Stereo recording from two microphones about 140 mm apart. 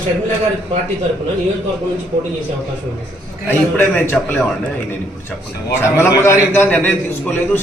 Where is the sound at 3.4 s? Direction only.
15° left (ahead or behind).